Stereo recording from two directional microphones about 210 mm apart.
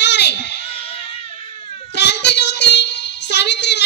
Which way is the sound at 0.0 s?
55° left (ahead or behind).